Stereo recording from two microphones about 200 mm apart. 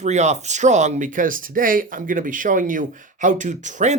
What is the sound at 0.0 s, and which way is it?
Speech, 35° right (ahead or behind).